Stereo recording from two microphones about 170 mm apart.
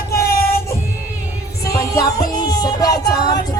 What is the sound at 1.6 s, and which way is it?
Music, 20° left (ahead or behind).